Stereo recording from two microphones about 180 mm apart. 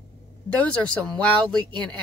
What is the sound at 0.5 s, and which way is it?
Speech, 5° left (ahead or behind).